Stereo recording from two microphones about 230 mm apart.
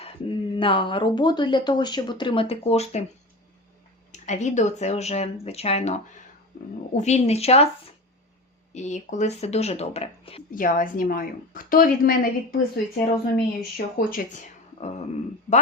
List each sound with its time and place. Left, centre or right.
0.0 s speech: left
4.1 s speech: left
8.7 s speech: left
10.5 s a woman's voice: left